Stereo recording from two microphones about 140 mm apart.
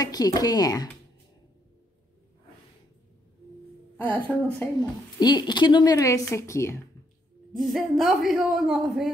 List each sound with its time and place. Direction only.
0.0 s speech: 25° left (ahead or behind)
3.9 s speech: 10° left (ahead or behind)
5.2 s speech: 30° left (ahead or behind)
7.5 s a woman's voice: centre (ahead or behind)